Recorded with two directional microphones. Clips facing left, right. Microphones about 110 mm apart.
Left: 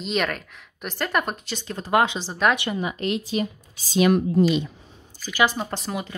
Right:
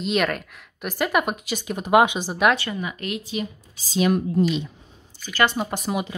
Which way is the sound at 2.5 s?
20° left (ahead or behind).